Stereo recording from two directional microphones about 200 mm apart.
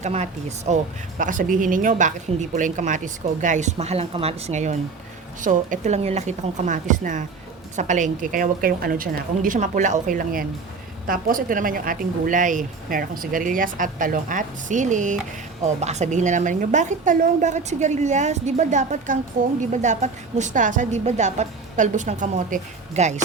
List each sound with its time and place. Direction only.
0.0 s a woman's voice: 35° right (ahead or behind)